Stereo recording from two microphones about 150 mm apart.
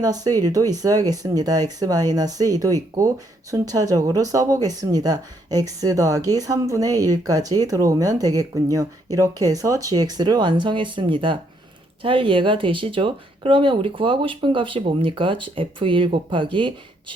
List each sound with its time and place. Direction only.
0.0 s speech: 25° right (ahead or behind)